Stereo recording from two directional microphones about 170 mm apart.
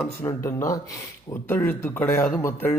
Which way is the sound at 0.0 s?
15° left (ahead or behind).